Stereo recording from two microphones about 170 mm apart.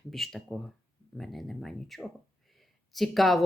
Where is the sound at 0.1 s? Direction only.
Centre (ahead or behind).